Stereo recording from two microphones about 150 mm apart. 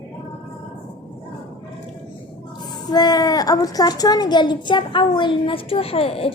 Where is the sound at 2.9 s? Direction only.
25° left (ahead or behind).